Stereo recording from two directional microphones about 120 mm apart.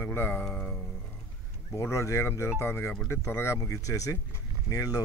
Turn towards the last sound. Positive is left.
turn(degrees=30)  # may be behind; listen again after turning